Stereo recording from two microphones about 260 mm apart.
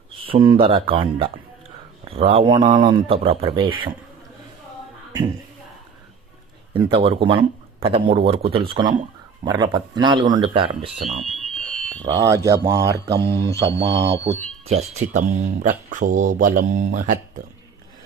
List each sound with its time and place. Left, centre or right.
0.3 s speech: centre
6.7 s speech: right
10.8 s speech: centre
12.0 s speech: centre
13.1 s speech: right
14.7 s speech: right